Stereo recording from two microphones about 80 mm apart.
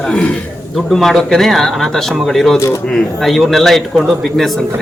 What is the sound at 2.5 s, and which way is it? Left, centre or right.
Speech, left.